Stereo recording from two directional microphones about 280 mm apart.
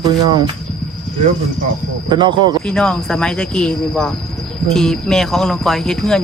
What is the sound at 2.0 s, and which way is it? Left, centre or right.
Speech, centre.